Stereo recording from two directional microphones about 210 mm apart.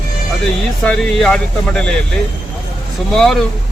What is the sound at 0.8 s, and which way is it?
Speech, 5° left (ahead or behind).